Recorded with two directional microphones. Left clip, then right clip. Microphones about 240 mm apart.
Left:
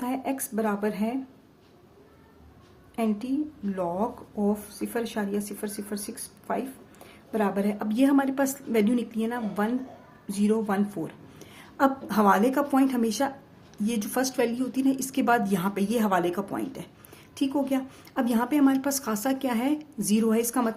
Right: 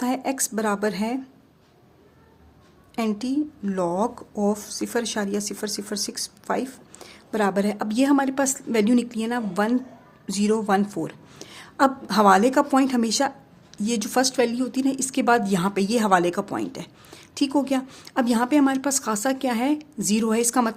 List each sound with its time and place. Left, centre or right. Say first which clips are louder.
0.0 s speech: right 5 dB; right
2.9 s speech: right 3 dB; right